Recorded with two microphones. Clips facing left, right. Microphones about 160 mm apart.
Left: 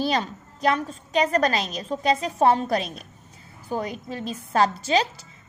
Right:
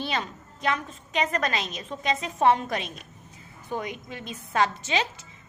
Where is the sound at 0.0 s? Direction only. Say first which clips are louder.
Left 6 dB; 35° left (ahead or behind).